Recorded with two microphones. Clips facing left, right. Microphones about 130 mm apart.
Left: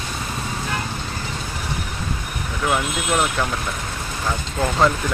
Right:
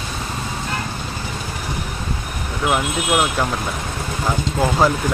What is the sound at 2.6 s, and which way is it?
Speech, 15° right (ahead or behind).